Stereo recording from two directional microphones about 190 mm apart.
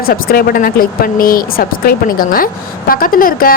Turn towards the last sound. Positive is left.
turn(degrees=50)  # may be behind; listen again after turning